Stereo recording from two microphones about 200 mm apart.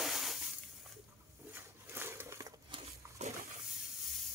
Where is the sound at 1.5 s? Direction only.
10° right (ahead or behind); by 3.3 s 30° right (ahead or behind).